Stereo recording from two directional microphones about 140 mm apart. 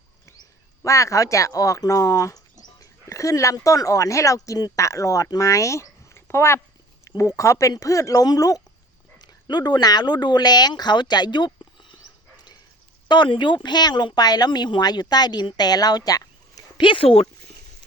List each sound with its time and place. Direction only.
0.8 s speech: 20° left (ahead or behind)
13.1 s speech: 35° left (ahead or behind)